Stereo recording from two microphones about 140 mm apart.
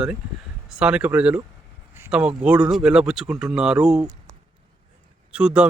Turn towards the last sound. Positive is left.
turn(degrees=-5)  # may be behind; listen again after turning